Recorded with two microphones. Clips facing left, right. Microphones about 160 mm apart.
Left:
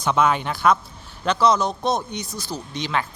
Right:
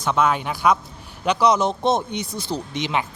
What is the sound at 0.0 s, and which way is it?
Speech, centre (ahead or behind).